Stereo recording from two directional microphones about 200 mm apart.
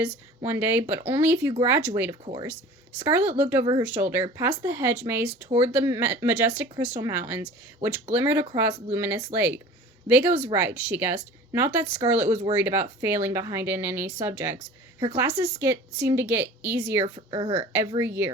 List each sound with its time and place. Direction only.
0.0 s speech: 10° right (ahead or behind)
2.2 s speech: 20° right (ahead or behind)
2.5 s speech: 10° right (ahead or behind)
17.2 s speech: 25° right (ahead or behind)
17.7 s speech: 10° right (ahead or behind)